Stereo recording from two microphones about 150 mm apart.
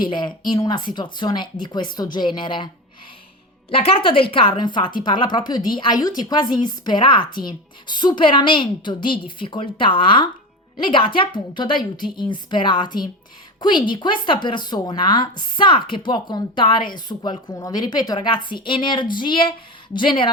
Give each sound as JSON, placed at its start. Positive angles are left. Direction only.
{"t": 0.0, "sound": "speech", "side_deg": 30}
{"t": 3.7, "sound": "a woman's voice", "side_deg": 35}